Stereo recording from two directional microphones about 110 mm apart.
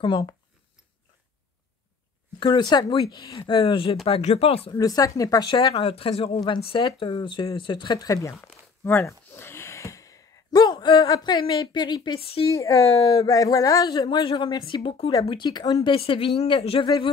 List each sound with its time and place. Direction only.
0.0 s speech: 45° left (ahead or behind)
2.4 s speech: 40° left (ahead or behind)
4.0 s speech: 70° left (ahead or behind)
4.7 s speech: 30° left (ahead or behind)
5.8 s speech: 55° left (ahead or behind)
6.4 s speech: 45° left (ahead or behind)
12.4 s speech: 30° left (ahead or behind)
15.9 s speech: 50° left (ahead or behind)